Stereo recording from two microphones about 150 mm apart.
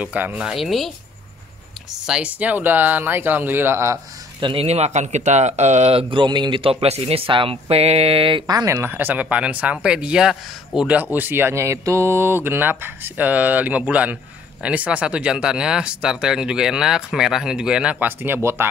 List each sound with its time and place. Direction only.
0.0 s speech: 10° right (ahead or behind)
4.4 s speech: 35° right (ahead or behind); by 18.7 s 15° right (ahead or behind)